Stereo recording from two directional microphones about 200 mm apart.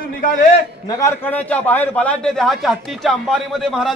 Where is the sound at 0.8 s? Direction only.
15° left (ahead or behind).